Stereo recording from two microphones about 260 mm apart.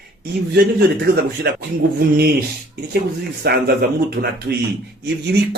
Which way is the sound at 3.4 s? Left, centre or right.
Right.